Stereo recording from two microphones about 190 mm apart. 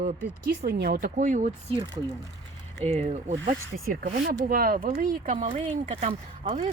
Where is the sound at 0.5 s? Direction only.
60° right (ahead or behind); by 1.5 s 45° right (ahead or behind).